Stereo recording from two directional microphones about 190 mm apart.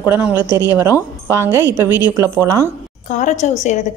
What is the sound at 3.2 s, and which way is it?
Cutlery, 35° left (ahead or behind).